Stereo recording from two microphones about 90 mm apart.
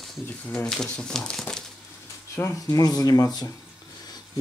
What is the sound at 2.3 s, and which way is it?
Speech, 35° left (ahead or behind).